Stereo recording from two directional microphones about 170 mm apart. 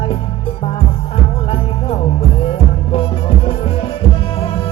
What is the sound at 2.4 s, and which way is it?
Music, 30° left (ahead or behind).